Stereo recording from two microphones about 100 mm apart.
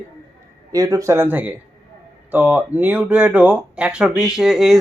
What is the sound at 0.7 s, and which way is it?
Speech, 35° right (ahead or behind).